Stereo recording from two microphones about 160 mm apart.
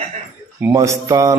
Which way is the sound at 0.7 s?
20° right (ahead or behind).